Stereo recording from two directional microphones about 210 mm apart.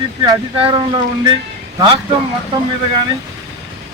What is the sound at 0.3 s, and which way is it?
Speech, 25° right (ahead or behind).